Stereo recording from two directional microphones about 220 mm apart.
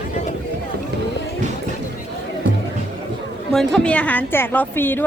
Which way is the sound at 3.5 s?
Centre (ahead or behind).